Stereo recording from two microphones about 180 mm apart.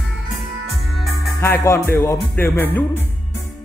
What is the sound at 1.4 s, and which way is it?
Music, 15° left (ahead or behind).